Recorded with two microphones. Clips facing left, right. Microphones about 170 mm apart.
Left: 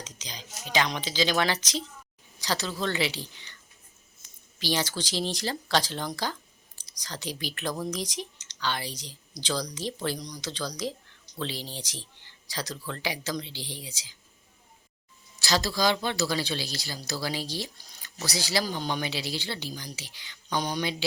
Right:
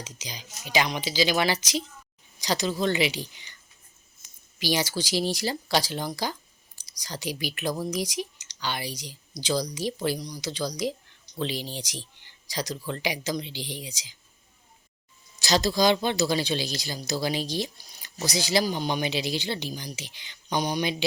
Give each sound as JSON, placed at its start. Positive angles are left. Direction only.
{"t": 0.0, "sound": "speech", "side_deg": -10}
{"t": 4.6, "sound": "speech", "side_deg": -10}
{"t": 15.4, "sound": "speech", "side_deg": -20}